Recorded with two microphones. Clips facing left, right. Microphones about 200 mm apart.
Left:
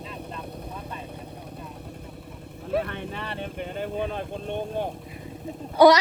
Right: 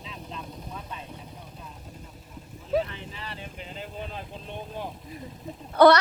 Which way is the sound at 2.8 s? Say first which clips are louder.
Left 1 dB; 60° left (ahead or behind).